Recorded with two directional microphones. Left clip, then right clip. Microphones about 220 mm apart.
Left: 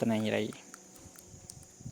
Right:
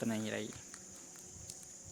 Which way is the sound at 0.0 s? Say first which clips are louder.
Left 8 dB; 30° left (ahead or behind).